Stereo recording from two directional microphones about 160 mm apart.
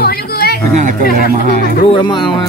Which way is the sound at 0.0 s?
75° left (ahead or behind).